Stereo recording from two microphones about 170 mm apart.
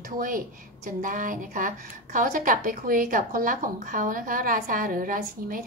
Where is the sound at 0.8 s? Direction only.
55° right (ahead or behind).